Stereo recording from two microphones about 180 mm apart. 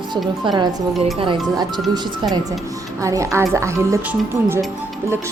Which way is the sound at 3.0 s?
15° right (ahead or behind).